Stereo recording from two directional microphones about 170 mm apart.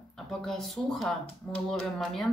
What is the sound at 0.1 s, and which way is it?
Speech, centre (ahead or behind).